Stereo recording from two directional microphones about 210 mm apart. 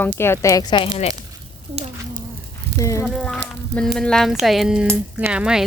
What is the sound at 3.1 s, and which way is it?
Speech, centre (ahead or behind).